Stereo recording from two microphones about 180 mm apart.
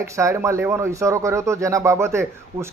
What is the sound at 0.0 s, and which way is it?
A man's voice, 15° right (ahead or behind).